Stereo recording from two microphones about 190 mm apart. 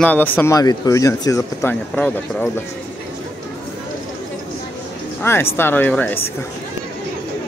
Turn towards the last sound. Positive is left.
turn(degrees=10)  # may be behind; listen again after turning